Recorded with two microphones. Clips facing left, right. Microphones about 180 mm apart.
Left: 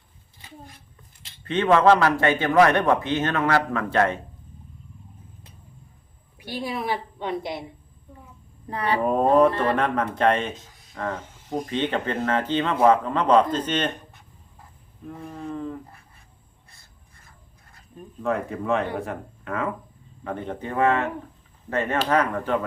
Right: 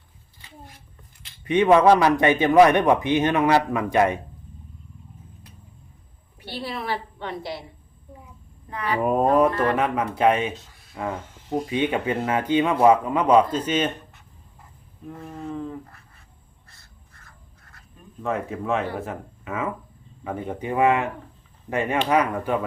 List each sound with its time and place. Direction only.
1.5 s speech: 15° right (ahead or behind)
6.4 s a woman's voice: 10° left (ahead or behind)
8.7 s speech: 35° left (ahead or behind)
9.0 s speech: 10° right (ahead or behind)
15.0 s a sound: 5° right (ahead or behind)
18.2 s speech: centre (ahead or behind)